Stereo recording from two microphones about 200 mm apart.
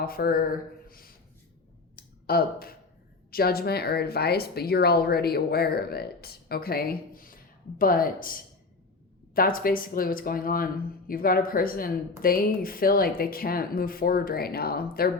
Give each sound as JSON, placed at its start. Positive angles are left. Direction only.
{"t": 0.0, "sound": "speech", "side_deg": 50}
{"t": 2.0, "sound": "a sound", "side_deg": 50}
{"t": 3.3, "sound": "speech", "side_deg": 50}